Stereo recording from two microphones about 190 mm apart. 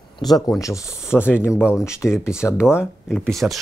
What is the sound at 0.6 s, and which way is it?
Speech, 15° left (ahead or behind).